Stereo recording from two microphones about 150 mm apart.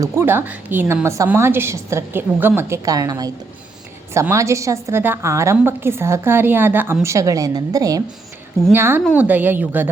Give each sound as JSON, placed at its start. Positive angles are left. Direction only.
{"t": 0.0, "sound": "a woman's voice", "side_deg": -15}